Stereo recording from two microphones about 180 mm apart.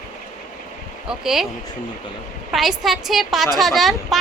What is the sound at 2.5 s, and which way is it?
Female singing, centre (ahead or behind).